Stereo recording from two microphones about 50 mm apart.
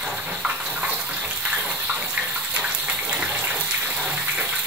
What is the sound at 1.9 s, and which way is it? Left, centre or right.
Water, right.